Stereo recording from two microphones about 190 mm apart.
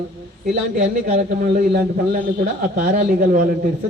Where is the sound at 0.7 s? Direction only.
40° right (ahead or behind).